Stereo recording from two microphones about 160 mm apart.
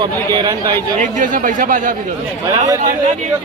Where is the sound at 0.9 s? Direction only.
55° right (ahead or behind).